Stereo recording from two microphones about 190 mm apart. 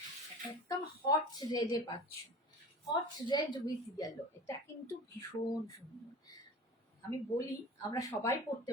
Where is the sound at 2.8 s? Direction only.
25° left (ahead or behind).